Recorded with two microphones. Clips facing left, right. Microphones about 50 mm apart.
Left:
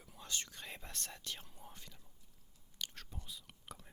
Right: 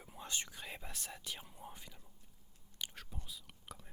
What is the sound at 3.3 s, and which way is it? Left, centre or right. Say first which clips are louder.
Speech: even; centre.